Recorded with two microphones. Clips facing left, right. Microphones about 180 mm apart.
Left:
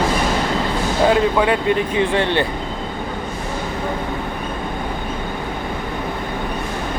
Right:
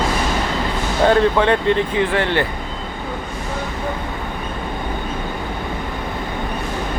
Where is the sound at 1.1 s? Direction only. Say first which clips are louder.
Right 2 dB; 10° left (ahead or behind).